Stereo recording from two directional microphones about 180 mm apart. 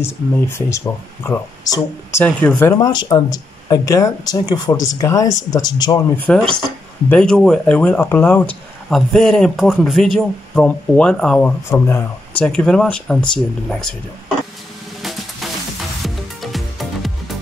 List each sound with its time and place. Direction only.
0.0 s speech: 15° left (ahead or behind)
2.7 s speech: 25° left (ahead or behind)
6.1 s speech: 5° left (ahead or behind)
16.3 s music: centre (ahead or behind)